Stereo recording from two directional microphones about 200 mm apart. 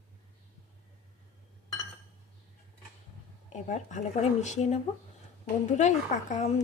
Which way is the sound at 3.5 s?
35° left (ahead or behind).